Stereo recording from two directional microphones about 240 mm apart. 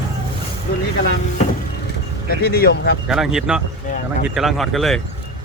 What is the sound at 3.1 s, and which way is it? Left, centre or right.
Speech, centre.